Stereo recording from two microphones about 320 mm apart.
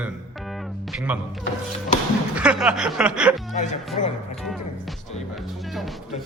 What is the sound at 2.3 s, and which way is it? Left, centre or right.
Speech, centre.